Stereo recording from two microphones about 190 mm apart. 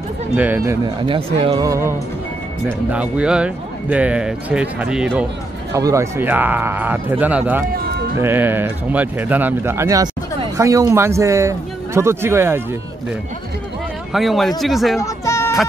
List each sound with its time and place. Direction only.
0.4 s speech: 10° right (ahead or behind)
1.0 s speech: 25° right (ahead or behind); by 5.2 s 5° right (ahead or behind)
5.7 s speech: 15° right (ahead or behind)
14.1 s speech: centre (ahead or behind)
15.0 s music: 15° left (ahead or behind)